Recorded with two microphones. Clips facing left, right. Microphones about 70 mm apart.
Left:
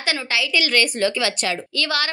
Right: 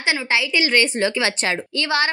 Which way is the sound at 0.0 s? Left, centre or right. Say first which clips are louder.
Right 3 dB; right.